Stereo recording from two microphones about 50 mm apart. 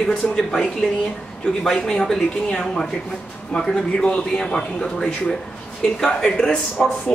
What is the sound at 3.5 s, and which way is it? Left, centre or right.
Speech, centre.